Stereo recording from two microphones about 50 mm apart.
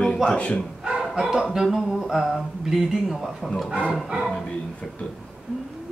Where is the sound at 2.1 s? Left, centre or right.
Centre.